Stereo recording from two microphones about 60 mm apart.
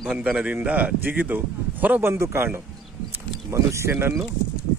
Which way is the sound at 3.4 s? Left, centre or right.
Right.